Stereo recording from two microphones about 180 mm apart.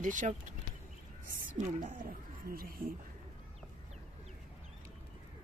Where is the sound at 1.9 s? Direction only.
50° right (ahead or behind).